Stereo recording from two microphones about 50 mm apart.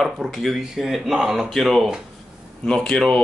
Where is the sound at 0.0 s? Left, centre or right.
Centre.